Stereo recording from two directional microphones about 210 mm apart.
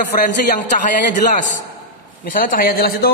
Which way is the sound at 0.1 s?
40° left (ahead or behind).